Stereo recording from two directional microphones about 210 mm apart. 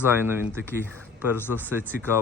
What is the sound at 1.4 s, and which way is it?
Speech, 10° left (ahead or behind).